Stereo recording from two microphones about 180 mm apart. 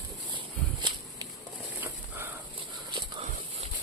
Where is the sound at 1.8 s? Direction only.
15° right (ahead or behind).